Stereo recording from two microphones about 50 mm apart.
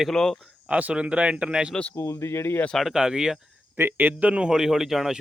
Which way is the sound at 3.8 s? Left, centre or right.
Right.